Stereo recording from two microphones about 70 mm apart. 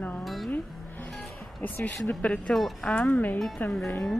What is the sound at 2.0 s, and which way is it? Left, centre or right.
A woman's voice, centre.